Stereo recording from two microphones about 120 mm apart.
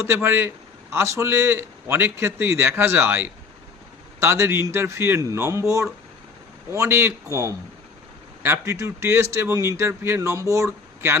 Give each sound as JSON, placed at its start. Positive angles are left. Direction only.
{"t": 0.0, "sound": "speech", "side_deg": -20}
{"t": 8.6, "sound": "speech", "side_deg": -25}